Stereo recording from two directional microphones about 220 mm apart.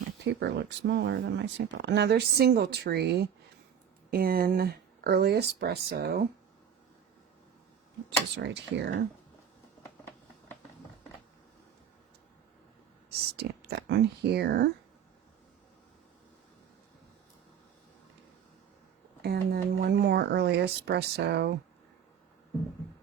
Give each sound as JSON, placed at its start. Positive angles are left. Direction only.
{"t": 0.3, "sound": "speech", "side_deg": -50}
{"t": 8.4, "sound": "speech", "side_deg": -55}
{"t": 13.1, "sound": "speech", "side_deg": -45}
{"t": 19.2, "sound": "speech", "side_deg": -45}